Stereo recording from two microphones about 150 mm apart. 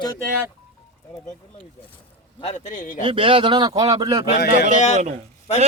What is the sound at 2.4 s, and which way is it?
Speech, 50° left (ahead or behind).